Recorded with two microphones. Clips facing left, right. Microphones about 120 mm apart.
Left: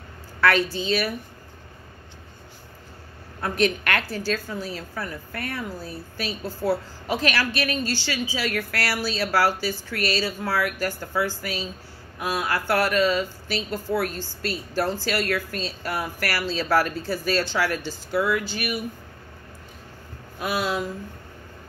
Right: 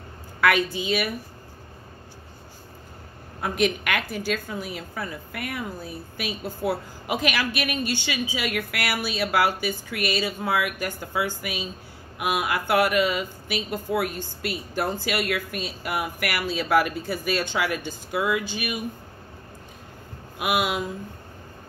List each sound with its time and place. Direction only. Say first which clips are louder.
0.4 s a sound: left 1 dB; 15° right (ahead or behind)
0.7 s a woman's voice: left 1 dB; 15° right (ahead or behind)
3.3 s a woman's voice: left 1 dB; 15° right (ahead or behind)
20.3 s a woman's voice: right 1 dB; 15° right (ahead or behind)